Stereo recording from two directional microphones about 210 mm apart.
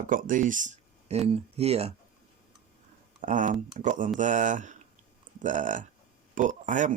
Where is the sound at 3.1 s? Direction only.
35° right (ahead or behind).